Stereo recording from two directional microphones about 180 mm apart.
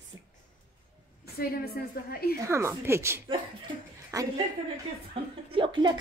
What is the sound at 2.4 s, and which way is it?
Speech, 15° right (ahead or behind).